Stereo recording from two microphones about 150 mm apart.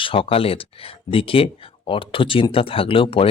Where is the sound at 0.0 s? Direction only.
35° left (ahead or behind).